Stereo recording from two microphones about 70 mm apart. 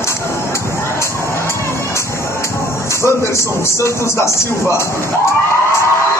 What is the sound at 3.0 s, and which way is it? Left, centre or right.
Speech, left.